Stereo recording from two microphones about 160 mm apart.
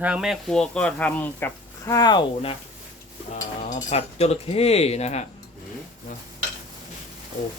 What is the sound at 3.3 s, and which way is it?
Speech, 45° left (ahead or behind).